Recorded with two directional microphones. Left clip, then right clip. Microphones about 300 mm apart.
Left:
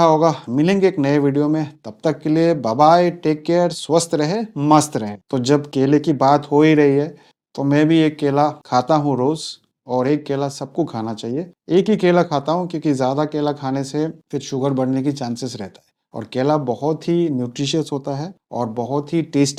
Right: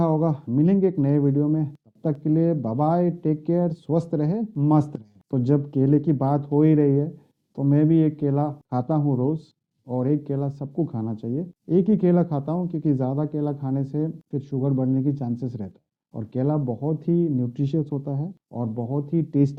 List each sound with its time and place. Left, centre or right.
0.0 s speech: centre
16.6 s speech: centre
17.1 s speech: centre; by 19.0 s left
19.1 s speech: centre